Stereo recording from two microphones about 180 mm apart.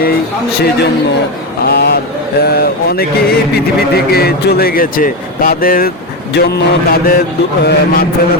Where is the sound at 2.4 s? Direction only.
60° left (ahead or behind).